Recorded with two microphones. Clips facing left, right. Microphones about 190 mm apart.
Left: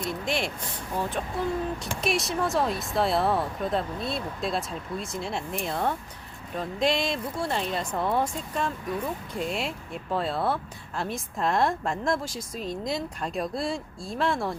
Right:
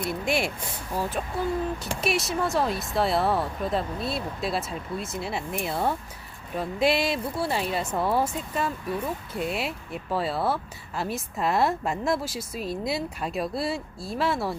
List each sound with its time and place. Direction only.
0.0 s speech: 10° right (ahead or behind)